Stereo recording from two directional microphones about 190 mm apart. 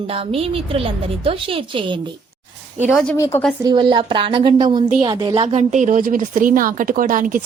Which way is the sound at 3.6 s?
25° right (ahead or behind).